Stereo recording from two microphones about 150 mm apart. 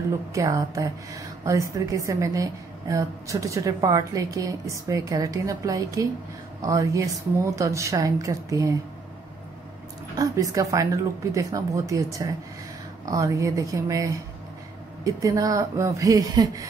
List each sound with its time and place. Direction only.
0.3 s a woman's voice: 20° right (ahead or behind)
10.1 s a woman's voice: 20° right (ahead or behind)